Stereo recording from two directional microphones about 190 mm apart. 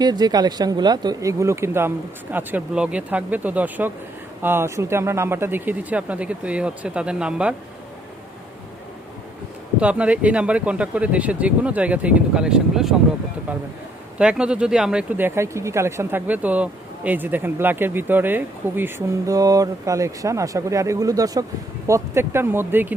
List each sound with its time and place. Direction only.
0.0 s speech: 20° right (ahead or behind); by 7.5 s 5° right (ahead or behind)
9.8 s speech: 5° right (ahead or behind)
14.2 s speech: 5° right (ahead or behind)